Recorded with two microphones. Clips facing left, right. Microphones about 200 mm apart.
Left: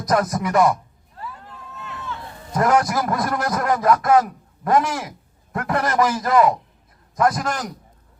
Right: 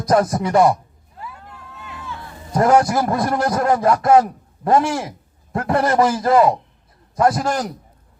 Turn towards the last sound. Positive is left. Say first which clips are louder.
# right 3 dB
turn(degrees=-30)  # may be behind; listen again after turning